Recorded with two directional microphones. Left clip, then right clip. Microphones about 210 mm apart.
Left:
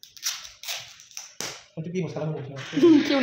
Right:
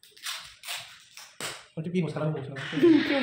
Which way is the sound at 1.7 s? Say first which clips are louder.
Even; 20° right (ahead or behind).